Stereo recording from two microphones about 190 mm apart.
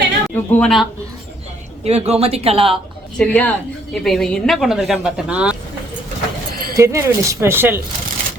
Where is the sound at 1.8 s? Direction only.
35° right (ahead or behind).